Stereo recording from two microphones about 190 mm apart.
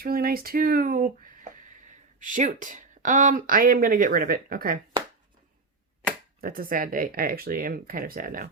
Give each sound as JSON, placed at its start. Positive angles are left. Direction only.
{"t": 0.0, "sound": "speech", "side_deg": -50}
{"t": 6.4, "sound": "speech", "side_deg": -50}